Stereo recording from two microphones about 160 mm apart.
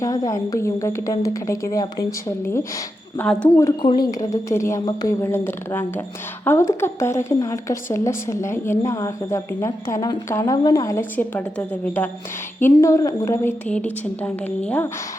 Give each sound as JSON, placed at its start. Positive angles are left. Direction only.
{"t": 0.0, "sound": "a woman's voice", "side_deg": 20}
{"t": 3.2, "sound": "speech", "side_deg": 5}
{"t": 3.8, "sound": "a woman's voice", "side_deg": 25}